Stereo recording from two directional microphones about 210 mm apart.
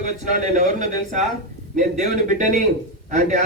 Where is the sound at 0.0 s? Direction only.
35° right (ahead or behind).